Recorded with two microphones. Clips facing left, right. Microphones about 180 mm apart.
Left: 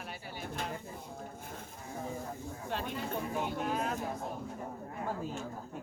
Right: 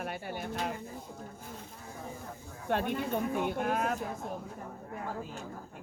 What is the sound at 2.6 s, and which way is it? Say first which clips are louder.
Speech: right 7 dB; 55° right (ahead or behind).